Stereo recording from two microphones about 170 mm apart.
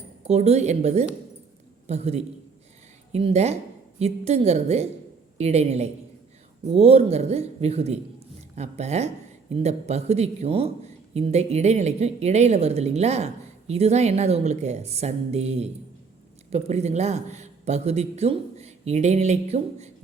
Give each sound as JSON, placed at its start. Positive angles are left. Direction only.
{"t": 0.3, "sound": "speech", "side_deg": -40}